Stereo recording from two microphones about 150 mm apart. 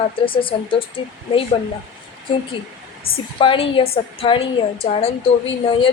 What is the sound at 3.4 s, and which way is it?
A woman's voice, 35° left (ahead or behind).